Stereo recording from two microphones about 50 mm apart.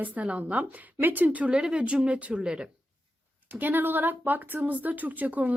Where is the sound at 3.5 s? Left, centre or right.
Right.